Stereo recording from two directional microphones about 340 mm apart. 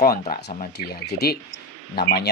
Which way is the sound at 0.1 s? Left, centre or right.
Centre.